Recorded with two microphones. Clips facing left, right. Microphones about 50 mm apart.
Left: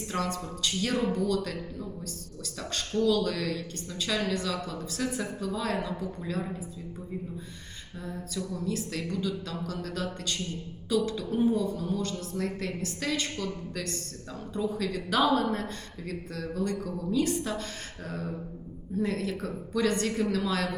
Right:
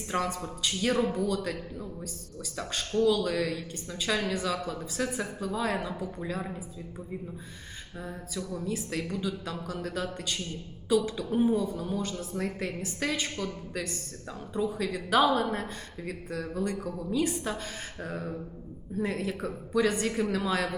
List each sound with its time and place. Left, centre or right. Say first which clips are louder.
0.1 s a woman's voice: right 2 dB; centre
8.0 s a woman's voice: left 2 dB; centre